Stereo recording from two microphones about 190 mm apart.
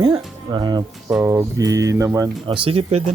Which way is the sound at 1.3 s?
15° right (ahead or behind).